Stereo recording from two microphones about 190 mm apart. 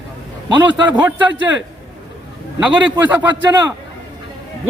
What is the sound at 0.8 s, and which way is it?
Speech, 10° right (ahead or behind).